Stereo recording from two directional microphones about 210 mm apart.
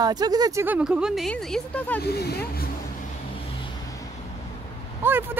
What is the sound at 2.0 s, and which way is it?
Speech, 50° left (ahead or behind).